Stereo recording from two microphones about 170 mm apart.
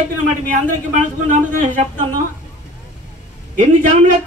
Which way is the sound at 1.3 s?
50° right (ahead or behind).